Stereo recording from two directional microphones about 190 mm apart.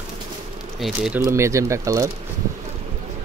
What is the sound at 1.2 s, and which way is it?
Speech, 15° right (ahead or behind).